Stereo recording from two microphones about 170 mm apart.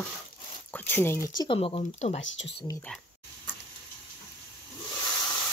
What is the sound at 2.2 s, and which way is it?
Speech, 90° left.